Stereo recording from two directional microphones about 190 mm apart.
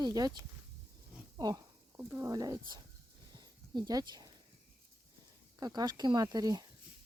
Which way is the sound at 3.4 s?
20° right (ahead or behind).